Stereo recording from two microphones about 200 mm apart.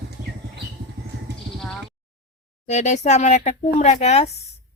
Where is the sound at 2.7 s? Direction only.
35° left (ahead or behind).